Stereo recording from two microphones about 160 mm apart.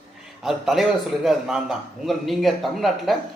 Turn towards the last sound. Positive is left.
turn(degrees=0)  # may be behind; listen again after turning